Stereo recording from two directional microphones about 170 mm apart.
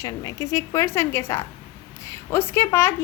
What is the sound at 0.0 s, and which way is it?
A woman's voice, 25° left (ahead or behind).